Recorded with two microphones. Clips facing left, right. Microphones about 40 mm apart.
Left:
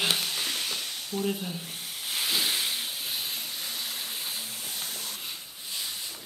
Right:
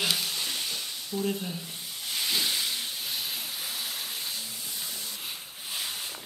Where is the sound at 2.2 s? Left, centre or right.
Centre.